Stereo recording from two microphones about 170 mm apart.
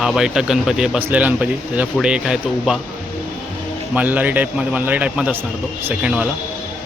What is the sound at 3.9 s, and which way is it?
A man's voice, 10° right (ahead or behind).